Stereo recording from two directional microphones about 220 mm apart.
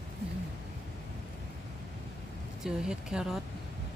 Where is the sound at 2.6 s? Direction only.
5° right (ahead or behind).